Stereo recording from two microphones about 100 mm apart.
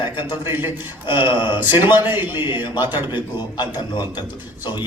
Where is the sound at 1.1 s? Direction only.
55° left (ahead or behind).